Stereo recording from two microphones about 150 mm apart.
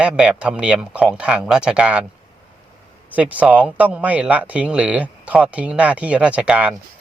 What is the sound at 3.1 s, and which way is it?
Speech, 10° right (ahead or behind).